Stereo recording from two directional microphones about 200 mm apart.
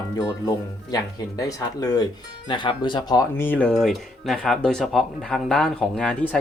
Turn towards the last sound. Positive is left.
turn(degrees=5)  # may be behind; listen again after turning